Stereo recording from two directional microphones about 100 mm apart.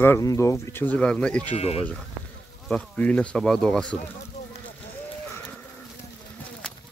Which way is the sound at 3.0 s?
10° left (ahead or behind).